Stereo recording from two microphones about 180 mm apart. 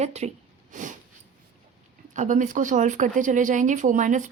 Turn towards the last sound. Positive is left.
turn(degrees=-45)  # may be behind; listen again after turning